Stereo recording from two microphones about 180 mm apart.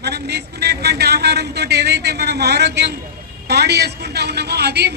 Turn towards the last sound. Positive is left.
turn(degrees=-65)  # may be behind; listen again after turning